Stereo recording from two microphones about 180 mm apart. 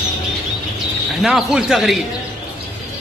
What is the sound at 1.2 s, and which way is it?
Speech, centre (ahead or behind).